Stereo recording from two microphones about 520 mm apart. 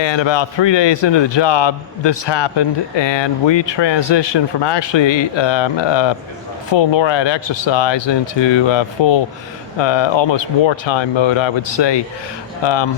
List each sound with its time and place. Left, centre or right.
0.0 s a man's voice: left